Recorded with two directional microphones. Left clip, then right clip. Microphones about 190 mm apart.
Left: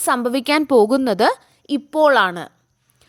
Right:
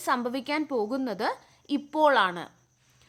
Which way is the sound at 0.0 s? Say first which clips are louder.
Left 9 dB; 35° left (ahead or behind).